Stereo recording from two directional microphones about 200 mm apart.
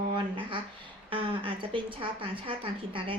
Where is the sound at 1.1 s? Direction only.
25° right (ahead or behind).